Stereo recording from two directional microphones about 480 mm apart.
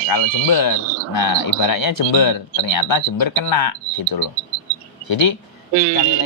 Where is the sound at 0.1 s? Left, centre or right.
Left.